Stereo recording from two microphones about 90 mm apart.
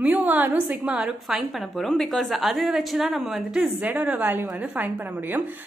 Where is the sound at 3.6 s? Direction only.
15° right (ahead or behind).